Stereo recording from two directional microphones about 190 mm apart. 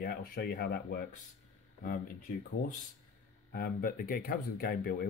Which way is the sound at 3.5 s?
50° left (ahead or behind).